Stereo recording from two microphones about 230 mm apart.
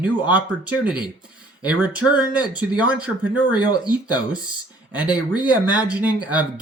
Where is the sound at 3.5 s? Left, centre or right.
Centre.